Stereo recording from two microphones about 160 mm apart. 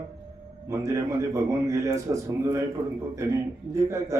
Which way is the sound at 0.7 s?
20° right (ahead or behind).